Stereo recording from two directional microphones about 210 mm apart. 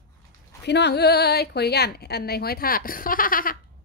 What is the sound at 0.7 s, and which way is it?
A woman's voice, 55° left (ahead or behind).